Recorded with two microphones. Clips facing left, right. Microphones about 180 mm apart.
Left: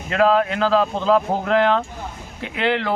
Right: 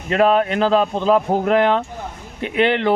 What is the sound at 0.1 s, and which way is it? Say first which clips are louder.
Speech: right 2 dB; 25° right (ahead or behind).